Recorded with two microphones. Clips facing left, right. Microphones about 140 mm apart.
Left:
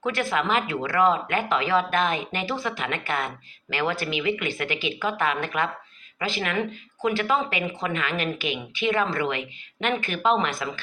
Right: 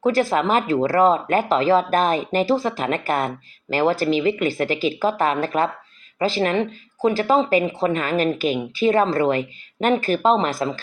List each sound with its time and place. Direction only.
0.0 s speech: 35° right (ahead or behind)